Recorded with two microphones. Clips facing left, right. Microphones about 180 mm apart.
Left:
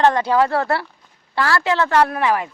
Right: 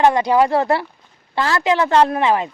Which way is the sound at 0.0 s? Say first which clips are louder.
Right 2 dB; 15° right (ahead or behind).